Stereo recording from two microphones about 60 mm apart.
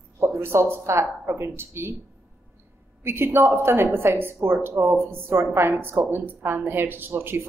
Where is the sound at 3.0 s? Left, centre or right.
Right.